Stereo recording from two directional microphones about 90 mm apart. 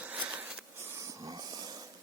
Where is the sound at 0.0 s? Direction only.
15° right (ahead or behind).